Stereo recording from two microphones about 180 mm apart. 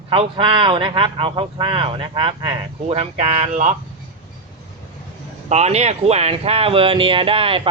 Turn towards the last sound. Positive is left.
turn(degrees=-30)  # may be behind; listen again after turning